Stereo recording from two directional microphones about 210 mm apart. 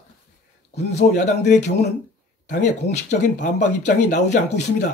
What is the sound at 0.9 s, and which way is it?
Speech, 35° left (ahead or behind).